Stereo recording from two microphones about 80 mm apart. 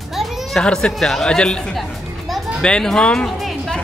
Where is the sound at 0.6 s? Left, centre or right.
Centre.